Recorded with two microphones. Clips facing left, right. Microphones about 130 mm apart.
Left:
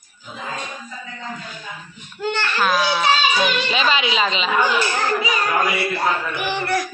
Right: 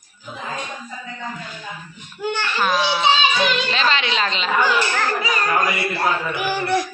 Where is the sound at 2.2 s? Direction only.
15° right (ahead or behind).